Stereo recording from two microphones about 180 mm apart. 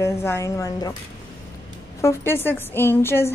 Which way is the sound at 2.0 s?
15° left (ahead or behind).